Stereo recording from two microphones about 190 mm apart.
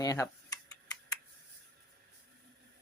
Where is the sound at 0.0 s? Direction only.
20° left (ahead or behind).